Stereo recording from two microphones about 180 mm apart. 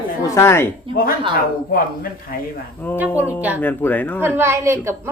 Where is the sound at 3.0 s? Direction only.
10° right (ahead or behind).